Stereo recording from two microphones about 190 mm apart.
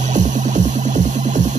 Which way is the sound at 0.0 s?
40° right (ahead or behind).